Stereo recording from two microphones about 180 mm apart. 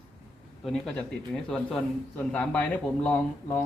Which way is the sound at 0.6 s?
5° left (ahead or behind).